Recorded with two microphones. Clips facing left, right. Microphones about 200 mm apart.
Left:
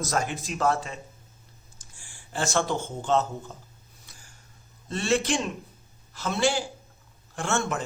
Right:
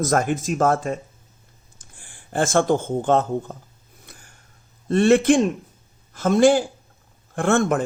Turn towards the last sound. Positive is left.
turn(degrees=-55)  # may be behind; listen again after turning